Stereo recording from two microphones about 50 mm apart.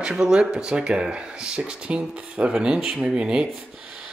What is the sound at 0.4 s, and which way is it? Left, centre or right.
Speech, centre.